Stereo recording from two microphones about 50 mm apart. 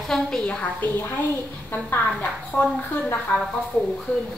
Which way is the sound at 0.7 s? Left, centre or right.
Left.